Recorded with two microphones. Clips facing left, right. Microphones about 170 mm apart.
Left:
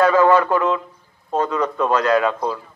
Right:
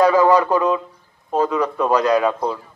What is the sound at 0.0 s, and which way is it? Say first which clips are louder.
A man's voice: even; 15° right (ahead or behind).